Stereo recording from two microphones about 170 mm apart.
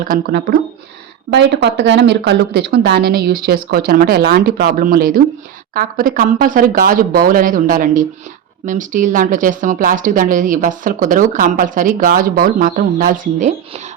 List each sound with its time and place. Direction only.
0.0 s speech: 55° right (ahead or behind)
1.3 s speech: 90° right; by 13.8 s 50° right (ahead or behind)